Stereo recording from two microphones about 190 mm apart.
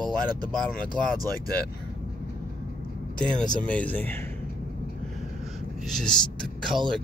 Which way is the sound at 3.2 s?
5° left (ahead or behind).